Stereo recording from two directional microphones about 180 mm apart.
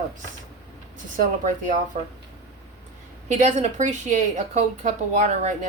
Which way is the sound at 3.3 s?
40° right (ahead or behind).